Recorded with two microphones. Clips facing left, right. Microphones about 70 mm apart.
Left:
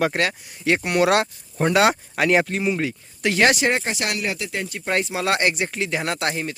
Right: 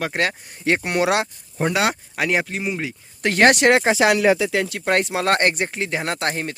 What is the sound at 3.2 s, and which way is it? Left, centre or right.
Speech, right.